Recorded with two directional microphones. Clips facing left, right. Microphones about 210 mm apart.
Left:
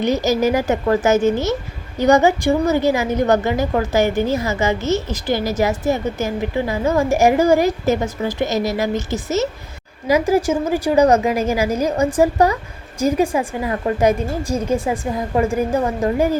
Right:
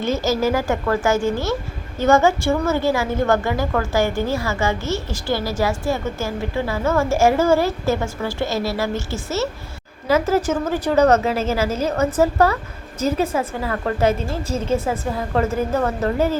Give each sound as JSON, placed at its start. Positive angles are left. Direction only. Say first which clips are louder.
{"t": 0.0, "sound": "a woman's voice", "louder": "left 3 dB", "side_deg": 15}